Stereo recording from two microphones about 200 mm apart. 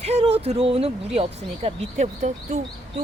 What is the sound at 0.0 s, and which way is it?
Speech, 30° right (ahead or behind).